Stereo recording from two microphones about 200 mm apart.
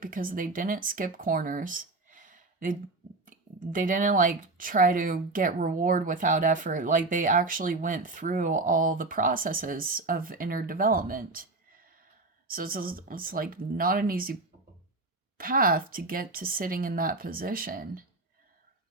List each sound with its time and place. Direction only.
0.0 s speech: 45° right (ahead or behind)
12.5 s speech: 45° right (ahead or behind)
15.4 s speech: 45° right (ahead or behind)